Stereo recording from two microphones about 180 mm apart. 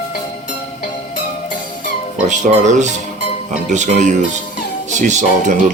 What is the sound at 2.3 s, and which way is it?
Speech, 40° right (ahead or behind).